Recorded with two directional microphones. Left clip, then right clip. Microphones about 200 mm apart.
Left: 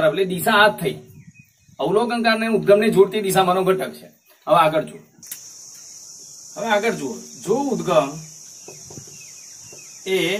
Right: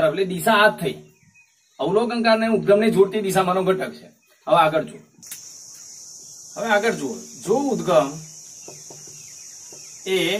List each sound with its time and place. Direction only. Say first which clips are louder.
0.0 s a man's voice: left 1 dB; 20° left (ahead or behind)
1.8 s a man's voice: left 1 dB; 20° left (ahead or behind)
6.5 s speech: even; 10° right (ahead or behind)
10.0 s speech: left 1 dB; 5° right (ahead or behind)